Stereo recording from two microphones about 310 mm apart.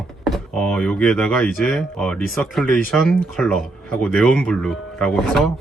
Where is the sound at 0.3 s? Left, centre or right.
Centre.